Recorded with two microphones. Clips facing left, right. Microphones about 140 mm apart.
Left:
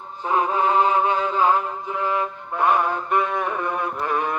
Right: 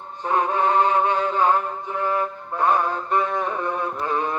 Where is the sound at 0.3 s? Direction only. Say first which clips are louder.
Even; 15° left (ahead or behind).